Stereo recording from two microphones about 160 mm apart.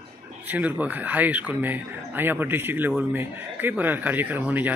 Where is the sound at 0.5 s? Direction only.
10° right (ahead or behind).